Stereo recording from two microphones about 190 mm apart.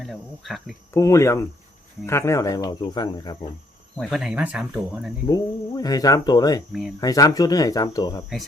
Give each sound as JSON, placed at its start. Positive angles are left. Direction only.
{"t": 0.0, "sound": "speech", "side_deg": 0}
{"t": 0.9, "sound": "speech", "side_deg": 15}
{"t": 3.9, "sound": "speech", "side_deg": 0}
{"t": 5.2, "sound": "speech", "side_deg": 20}